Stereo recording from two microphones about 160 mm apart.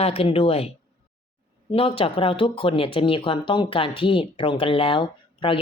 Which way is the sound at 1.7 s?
35° left (ahead or behind).